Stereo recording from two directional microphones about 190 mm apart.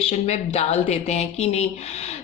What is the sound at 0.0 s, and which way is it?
Speech, 35° left (ahead or behind).